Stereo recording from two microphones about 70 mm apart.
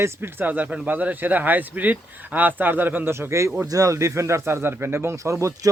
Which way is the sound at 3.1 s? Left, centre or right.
Right.